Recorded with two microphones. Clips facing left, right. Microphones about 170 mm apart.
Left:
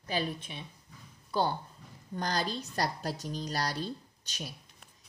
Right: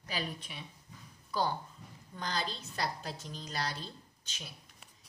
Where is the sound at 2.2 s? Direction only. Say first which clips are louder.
Left 5 dB; 40° left (ahead or behind).